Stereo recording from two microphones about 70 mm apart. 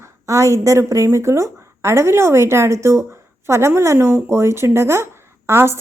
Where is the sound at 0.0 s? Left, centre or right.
Right.